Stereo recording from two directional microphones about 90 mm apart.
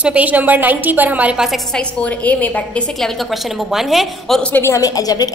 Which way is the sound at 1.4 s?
Centre (ahead or behind).